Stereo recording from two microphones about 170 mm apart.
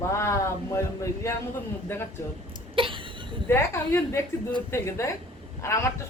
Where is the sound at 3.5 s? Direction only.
15° left (ahead or behind).